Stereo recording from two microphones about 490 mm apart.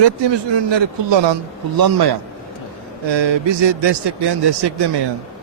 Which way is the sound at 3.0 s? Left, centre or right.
Right.